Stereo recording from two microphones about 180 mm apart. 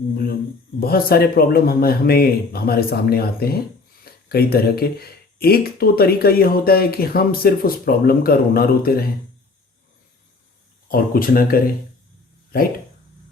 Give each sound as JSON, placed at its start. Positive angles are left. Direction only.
{"t": 0.8, "sound": "speech", "side_deg": 55}
{"t": 10.8, "sound": "speech", "side_deg": 55}